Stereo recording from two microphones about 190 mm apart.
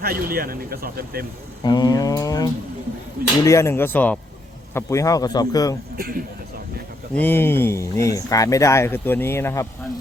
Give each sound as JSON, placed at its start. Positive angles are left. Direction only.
{"t": 0.0, "sound": "speech", "side_deg": -50}
{"t": 1.6, "sound": "speech", "side_deg": 20}
{"t": 6.0, "sound": "speech", "side_deg": -50}
{"t": 7.2, "sound": "speech", "side_deg": 10}